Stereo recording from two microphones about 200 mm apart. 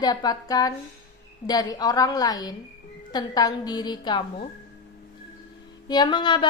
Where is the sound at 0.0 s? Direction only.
20° left (ahead or behind).